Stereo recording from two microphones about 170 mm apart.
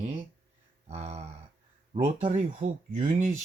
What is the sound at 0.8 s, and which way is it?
Speech, 40° right (ahead or behind).